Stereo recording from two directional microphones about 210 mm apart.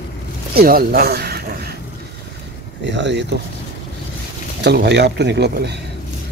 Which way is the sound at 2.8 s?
55° right (ahead or behind).